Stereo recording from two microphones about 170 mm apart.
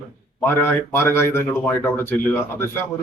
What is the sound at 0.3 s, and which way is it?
Speech, 15° left (ahead or behind).